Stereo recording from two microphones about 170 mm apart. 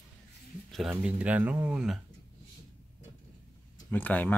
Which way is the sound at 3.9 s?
10° left (ahead or behind).